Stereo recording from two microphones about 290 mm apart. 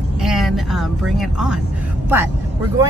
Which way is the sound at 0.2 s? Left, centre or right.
Centre.